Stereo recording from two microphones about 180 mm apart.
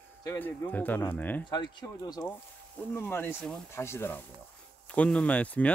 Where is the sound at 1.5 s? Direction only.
25° left (ahead or behind).